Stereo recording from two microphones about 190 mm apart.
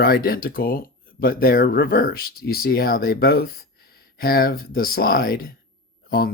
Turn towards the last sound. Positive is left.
turn(degrees=50)  # may be behind; listen again after turning